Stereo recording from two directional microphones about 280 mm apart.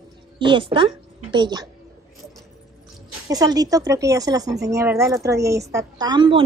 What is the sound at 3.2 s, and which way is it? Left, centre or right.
A woman's voice, centre.